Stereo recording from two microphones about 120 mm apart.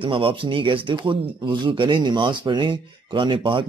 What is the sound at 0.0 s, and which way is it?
Speech, 45° right (ahead or behind).